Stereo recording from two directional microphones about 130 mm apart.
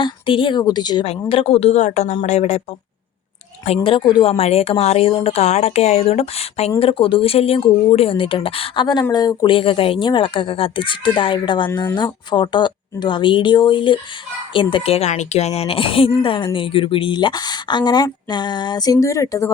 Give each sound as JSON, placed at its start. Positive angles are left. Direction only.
{"t": 0.0, "sound": "a woman's voice", "side_deg": 40}
{"t": 1.3, "sound": "speech", "side_deg": 45}
{"t": 3.8, "sound": "a woman's voice", "side_deg": 40}